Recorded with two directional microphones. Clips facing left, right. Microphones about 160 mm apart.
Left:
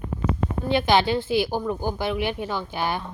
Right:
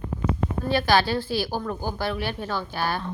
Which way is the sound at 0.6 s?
20° left (ahead or behind).